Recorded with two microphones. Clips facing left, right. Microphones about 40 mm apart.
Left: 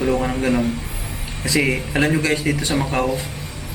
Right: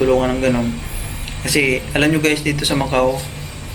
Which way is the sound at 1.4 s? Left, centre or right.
Right.